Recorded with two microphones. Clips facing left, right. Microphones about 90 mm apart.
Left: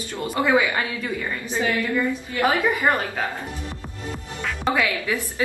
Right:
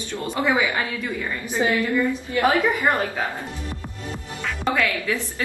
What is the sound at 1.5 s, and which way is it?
Speech, 20° right (ahead or behind).